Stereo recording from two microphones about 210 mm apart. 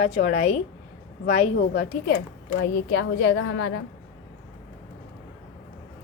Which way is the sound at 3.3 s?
90° left.